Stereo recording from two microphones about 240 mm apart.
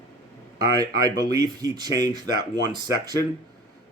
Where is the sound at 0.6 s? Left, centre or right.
Centre.